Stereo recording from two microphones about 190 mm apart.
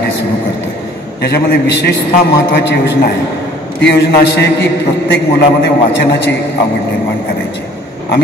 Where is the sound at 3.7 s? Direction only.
65° left (ahead or behind).